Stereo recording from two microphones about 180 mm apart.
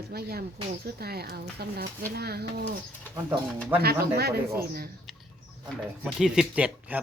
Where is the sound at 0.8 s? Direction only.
60° right (ahead or behind).